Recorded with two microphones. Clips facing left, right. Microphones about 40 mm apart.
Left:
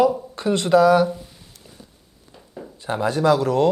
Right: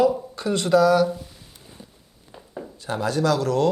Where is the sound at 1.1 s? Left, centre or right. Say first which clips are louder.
Even; centre.